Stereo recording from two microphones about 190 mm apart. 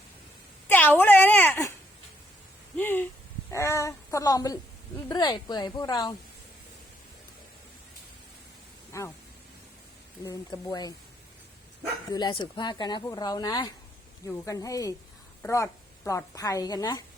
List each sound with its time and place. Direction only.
0.7 s a sound: 10° left (ahead or behind)
2.7 s a sound: 10° left (ahead or behind)
3.5 s speech: 15° left (ahead or behind)
8.9 s speech: 15° left (ahead or behind)
10.2 s speech: 20° left (ahead or behind)
12.1 s a woman's voice: 20° left (ahead or behind)